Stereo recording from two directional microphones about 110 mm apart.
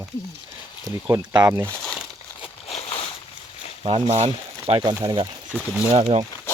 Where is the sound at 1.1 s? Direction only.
40° right (ahead or behind).